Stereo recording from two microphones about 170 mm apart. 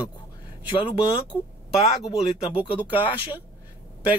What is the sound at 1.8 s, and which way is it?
Speech, 40° left (ahead or behind).